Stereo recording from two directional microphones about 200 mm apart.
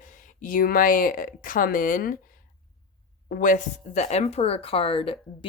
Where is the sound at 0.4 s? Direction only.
45° left (ahead or behind).